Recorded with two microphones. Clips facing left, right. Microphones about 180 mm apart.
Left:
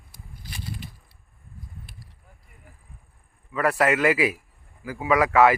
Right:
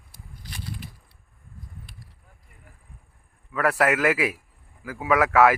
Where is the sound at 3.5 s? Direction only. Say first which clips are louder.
Even; 5° right (ahead or behind).